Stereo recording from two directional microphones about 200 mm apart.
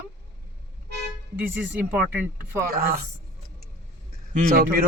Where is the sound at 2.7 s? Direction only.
50° right (ahead or behind).